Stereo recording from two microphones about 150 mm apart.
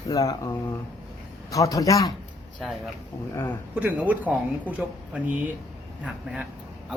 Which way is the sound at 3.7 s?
10° right (ahead or behind).